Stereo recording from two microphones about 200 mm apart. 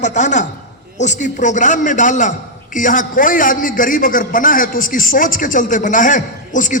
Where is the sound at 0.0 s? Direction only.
35° left (ahead or behind).